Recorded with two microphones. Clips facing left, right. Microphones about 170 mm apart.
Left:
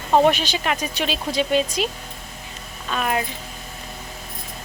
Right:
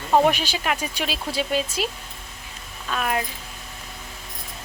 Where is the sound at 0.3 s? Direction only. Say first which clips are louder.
Left 2 dB; 10° right (ahead or behind).